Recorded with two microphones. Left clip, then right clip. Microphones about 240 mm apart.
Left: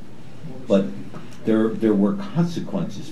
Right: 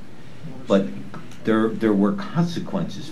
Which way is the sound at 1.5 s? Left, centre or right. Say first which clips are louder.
Even; centre.